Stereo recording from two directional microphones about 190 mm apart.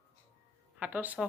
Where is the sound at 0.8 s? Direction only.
10° right (ahead or behind).